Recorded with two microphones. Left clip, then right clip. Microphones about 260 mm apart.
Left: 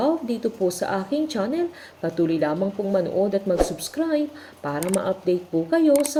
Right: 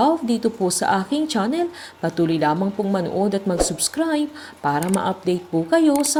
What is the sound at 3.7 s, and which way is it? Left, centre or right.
Speech, right.